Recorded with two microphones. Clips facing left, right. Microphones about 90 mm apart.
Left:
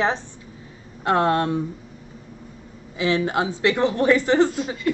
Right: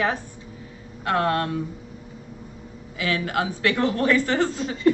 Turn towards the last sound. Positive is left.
turn(degrees=15)  # may be behind; listen again after turning